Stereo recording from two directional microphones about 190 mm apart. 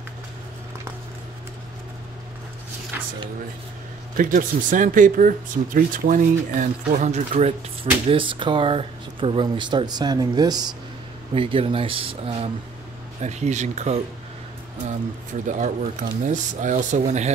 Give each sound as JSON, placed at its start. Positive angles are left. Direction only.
{"t": 2.9, "sound": "a sound", "side_deg": -10}
{"t": 4.2, "sound": "speech", "side_deg": -45}
{"t": 15.4, "sound": "speech", "side_deg": -40}